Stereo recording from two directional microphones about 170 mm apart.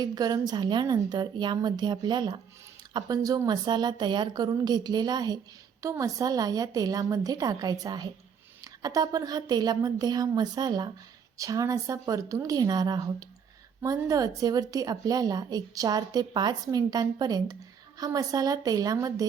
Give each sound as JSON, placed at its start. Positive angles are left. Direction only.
{"t": 0.0, "sound": "a woman's voice", "side_deg": -20}